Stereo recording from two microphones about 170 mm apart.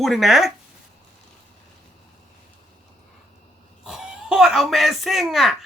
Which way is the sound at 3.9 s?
Centre (ahead or behind).